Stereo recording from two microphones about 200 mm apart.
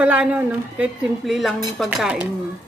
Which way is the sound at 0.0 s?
5° right (ahead or behind).